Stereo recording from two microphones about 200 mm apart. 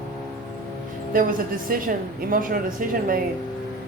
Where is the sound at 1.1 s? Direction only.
45° right (ahead or behind).